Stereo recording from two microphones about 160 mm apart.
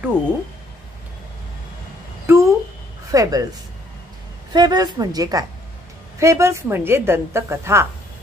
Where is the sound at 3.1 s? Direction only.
20° right (ahead or behind).